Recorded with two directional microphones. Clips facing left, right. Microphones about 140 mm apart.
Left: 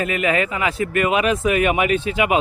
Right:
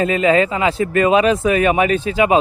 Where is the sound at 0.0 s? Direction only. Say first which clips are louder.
Right 6 dB; 30° right (ahead or behind).